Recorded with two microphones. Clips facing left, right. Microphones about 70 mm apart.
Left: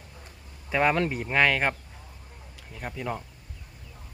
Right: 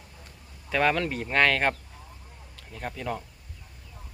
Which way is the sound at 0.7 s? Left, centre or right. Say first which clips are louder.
Left 1 dB; centre.